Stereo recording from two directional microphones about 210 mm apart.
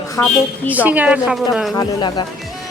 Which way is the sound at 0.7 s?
5° right (ahead or behind).